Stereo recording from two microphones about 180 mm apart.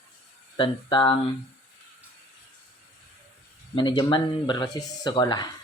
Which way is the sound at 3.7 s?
25° left (ahead or behind).